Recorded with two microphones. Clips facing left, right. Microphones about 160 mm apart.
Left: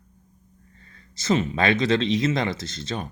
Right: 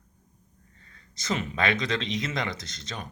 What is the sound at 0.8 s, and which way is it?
Speech, 30° left (ahead or behind).